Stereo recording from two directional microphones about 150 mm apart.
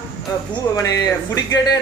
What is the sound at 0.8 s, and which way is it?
Speech, 25° left (ahead or behind).